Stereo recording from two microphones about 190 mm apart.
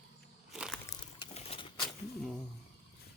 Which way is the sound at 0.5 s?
Centre (ahead or behind).